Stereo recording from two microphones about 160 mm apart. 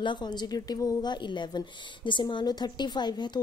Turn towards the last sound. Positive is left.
turn(degrees=25)  # may be behind; listen again after turning